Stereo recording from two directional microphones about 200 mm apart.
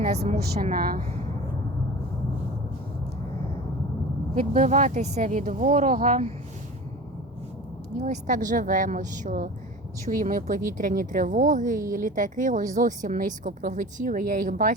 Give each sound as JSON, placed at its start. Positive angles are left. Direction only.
{"t": 0.0, "sound": "a woman's voice", "side_deg": -35}
{"t": 4.5, "sound": "speech", "side_deg": -35}
{"t": 7.9, "sound": "speech", "side_deg": -35}